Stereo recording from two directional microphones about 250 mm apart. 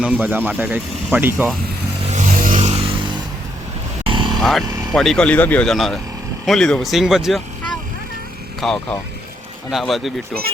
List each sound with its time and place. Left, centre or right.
0.0 s speech: centre
2.1 s vehicle: right
4.4 s speech: centre